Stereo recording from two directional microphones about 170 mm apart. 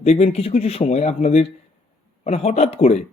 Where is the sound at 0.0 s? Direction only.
40° left (ahead or behind).